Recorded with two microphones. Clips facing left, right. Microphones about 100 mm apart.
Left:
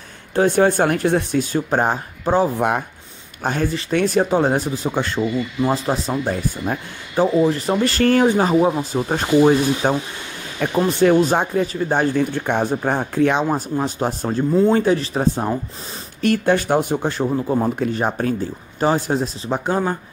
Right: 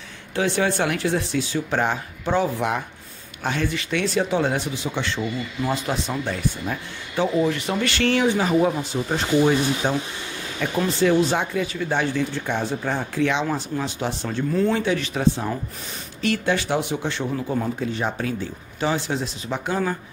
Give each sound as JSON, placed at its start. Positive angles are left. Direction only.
{"t": 0.3, "sound": "speech", "side_deg": 40}
{"t": 8.5, "sound": "speech", "side_deg": 25}
{"t": 8.9, "sound": "speech", "side_deg": 50}
{"t": 16.2, "sound": "speech", "side_deg": 50}
{"t": 17.2, "sound": "speech", "side_deg": 35}
{"t": 17.6, "sound": "speech", "side_deg": 45}